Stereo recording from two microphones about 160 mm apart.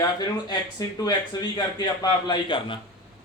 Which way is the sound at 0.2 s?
25° left (ahead or behind).